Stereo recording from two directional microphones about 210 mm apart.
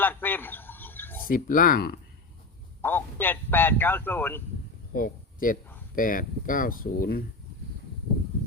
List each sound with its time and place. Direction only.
0.0 s a sound: 10° left (ahead or behind)
1.3 s speech: 40° left (ahead or behind)
2.8 s a man's voice: 10° left (ahead or behind)
4.9 s speech: 40° left (ahead or behind)